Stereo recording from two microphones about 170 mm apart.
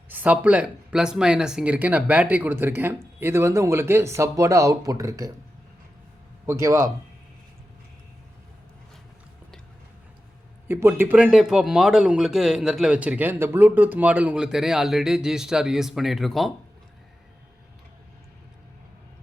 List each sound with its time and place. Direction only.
0.1 s speech: 10° right (ahead or behind)
6.4 s speech: 15° right (ahead or behind)
10.7 s speech: 15° right (ahead or behind)